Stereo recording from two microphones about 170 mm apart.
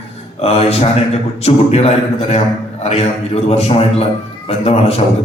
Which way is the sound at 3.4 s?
35° left (ahead or behind).